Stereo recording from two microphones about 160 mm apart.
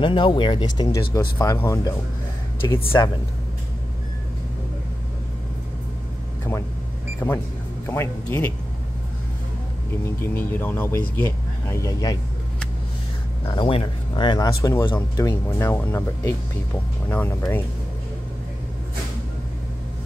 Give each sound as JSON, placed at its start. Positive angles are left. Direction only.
{"t": 0.0, "sound": "speech", "side_deg": 30}
{"t": 7.2, "sound": "speech", "side_deg": 15}
{"t": 10.0, "sound": "speech", "side_deg": 15}
{"t": 13.6, "sound": "speech", "side_deg": 35}